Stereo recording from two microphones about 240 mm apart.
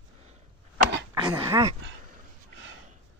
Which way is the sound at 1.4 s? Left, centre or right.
Centre.